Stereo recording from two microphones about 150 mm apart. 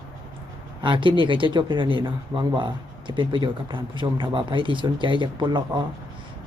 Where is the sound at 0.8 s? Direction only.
35° right (ahead or behind).